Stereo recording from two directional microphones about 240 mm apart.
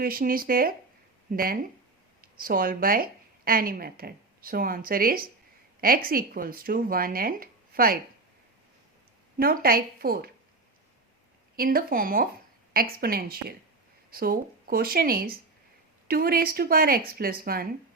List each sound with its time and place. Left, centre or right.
0.0 s a woman's voice: right
9.4 s speech: right
11.5 s speech: right